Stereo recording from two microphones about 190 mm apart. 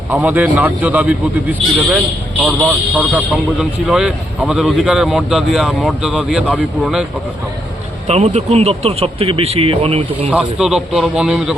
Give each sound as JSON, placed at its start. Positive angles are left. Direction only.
{"t": 0.1, "sound": "a man's voice", "side_deg": -10}
{"t": 8.0, "sound": "speech", "side_deg": -35}
{"t": 10.3, "sound": "a man's voice", "side_deg": -5}